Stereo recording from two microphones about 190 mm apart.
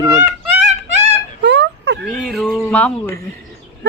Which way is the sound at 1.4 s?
65° right (ahead or behind).